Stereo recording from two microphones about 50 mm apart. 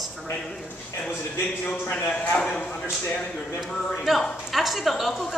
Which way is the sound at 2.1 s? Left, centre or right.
Left.